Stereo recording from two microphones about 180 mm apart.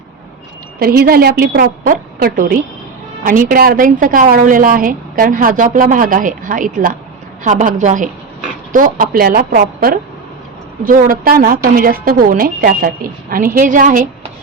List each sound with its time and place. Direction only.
0.8 s a woman's voice: 55° right (ahead or behind)